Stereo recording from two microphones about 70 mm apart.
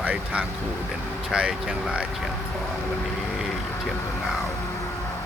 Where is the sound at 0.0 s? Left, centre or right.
Centre.